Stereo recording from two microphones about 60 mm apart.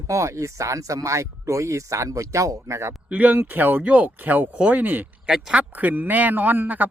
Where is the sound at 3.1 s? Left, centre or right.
Right.